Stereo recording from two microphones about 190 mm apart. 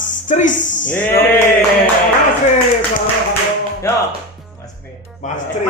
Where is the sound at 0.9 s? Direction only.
10° left (ahead or behind).